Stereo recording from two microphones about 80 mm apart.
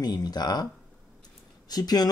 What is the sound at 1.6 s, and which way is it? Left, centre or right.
Speech, left.